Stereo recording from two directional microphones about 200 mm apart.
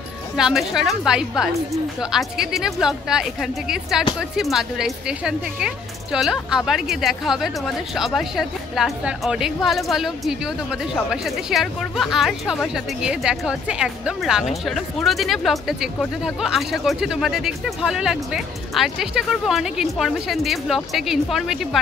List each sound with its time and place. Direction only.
0.4 s a woman's voice: centre (ahead or behind)